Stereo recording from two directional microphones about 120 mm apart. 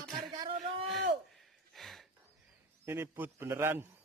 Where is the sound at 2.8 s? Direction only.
20° right (ahead or behind).